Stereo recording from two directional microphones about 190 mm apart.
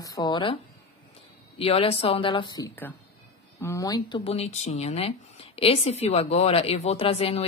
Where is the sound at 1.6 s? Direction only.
30° left (ahead or behind).